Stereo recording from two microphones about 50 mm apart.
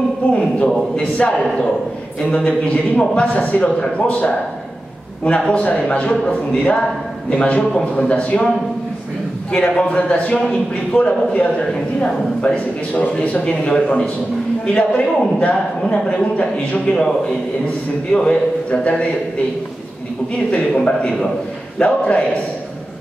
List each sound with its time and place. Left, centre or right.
0.3 s a sound: left
1.4 s a man's voice: centre
2.3 s speech: left
3.8 s a man's voice: centre
18.1 s speech: left
20.5 s speech: left